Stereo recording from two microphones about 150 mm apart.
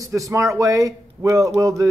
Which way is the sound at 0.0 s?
20° right (ahead or behind).